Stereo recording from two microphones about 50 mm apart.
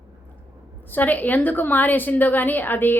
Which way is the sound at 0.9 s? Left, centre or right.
Left.